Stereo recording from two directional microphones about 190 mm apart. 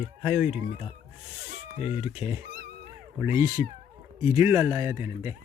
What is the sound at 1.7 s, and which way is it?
Speech, 35° left (ahead or behind).